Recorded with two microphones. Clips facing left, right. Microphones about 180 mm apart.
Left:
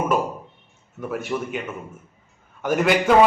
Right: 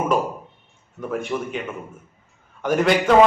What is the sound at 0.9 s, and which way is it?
A man's voice, 5° left (ahead or behind).